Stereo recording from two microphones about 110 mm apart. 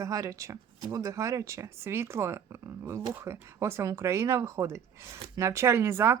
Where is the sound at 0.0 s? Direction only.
30° right (ahead or behind).